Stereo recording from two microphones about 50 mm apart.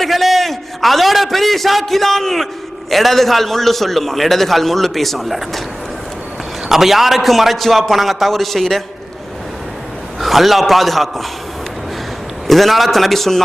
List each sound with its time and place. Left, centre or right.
0.0 s a man's voice: centre
6.7 s a man's voice: centre
10.2 s a man's voice: centre
12.5 s a man's voice: centre